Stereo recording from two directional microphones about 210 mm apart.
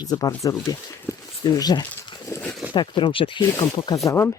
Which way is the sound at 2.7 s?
25° left (ahead or behind).